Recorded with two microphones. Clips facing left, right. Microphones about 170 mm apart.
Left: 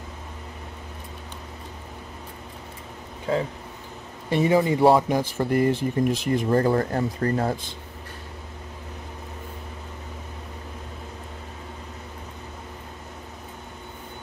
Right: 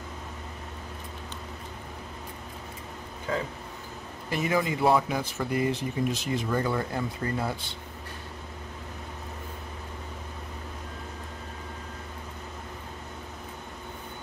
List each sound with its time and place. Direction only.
3.3 s speech: 30° left (ahead or behind)